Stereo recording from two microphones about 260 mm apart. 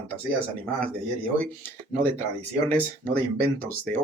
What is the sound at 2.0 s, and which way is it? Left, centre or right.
Speech, centre.